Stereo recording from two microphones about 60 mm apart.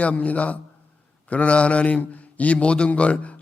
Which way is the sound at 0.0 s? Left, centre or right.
Left.